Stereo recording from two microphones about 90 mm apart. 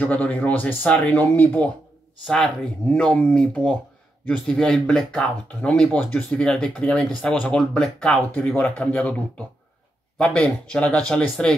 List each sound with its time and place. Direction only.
0.0 s speech: 20° left (ahead or behind)
2.2 s speech: 10° left (ahead or behind)
10.1 s speech: 15° left (ahead or behind)